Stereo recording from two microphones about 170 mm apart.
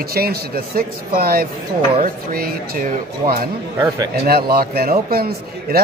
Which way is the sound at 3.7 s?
20° right (ahead or behind).